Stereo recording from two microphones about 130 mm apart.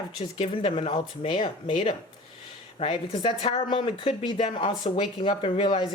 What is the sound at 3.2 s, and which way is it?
A woman's voice, 40° left (ahead or behind).